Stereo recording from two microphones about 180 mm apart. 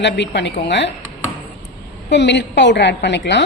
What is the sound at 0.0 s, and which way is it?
Speech, 75° left (ahead or behind).